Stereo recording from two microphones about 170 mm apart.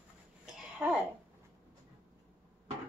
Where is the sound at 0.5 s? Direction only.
5° right (ahead or behind).